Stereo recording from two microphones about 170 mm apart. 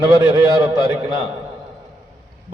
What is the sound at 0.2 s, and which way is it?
A man's voice, 20° right (ahead or behind).